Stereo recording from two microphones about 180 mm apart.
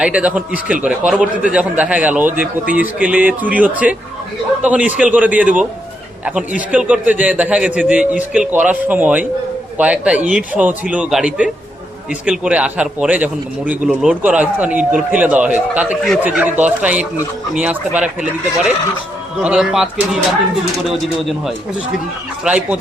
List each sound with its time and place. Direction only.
0.0 s a man's voice: 5° right (ahead or behind)
6.7 s a man's voice: 5° right (ahead or behind)
19.4 s a man's voice: 5° right (ahead or behind)